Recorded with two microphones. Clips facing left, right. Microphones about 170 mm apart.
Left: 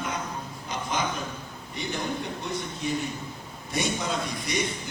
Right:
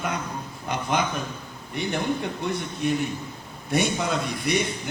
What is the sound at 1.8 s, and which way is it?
A man's voice, 60° right (ahead or behind).